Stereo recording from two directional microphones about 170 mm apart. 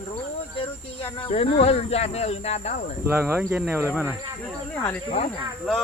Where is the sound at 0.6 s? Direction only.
35° left (ahead or behind).